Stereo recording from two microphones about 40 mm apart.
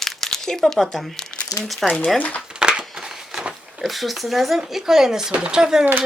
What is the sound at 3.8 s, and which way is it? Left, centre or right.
Speech, centre.